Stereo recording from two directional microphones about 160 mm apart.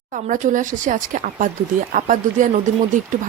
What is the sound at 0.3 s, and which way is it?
Speech, 55° right (ahead or behind).